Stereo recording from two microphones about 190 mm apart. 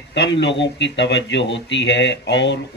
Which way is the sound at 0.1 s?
70° left (ahead or behind).